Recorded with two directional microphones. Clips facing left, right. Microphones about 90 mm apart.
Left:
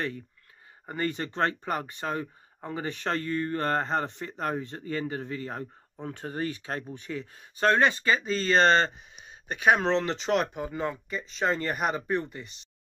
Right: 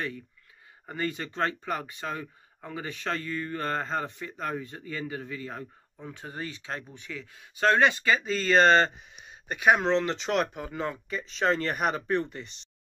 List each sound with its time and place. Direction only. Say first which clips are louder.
0.8 s speech: left 2 dB; 40° left (ahead or behind)
9.7 s speech: even; centre (ahead or behind)